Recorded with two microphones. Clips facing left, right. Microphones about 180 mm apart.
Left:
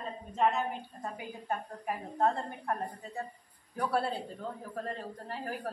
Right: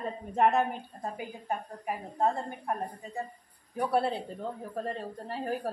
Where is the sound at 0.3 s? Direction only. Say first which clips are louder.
Right 4 dB; 60° right (ahead or behind).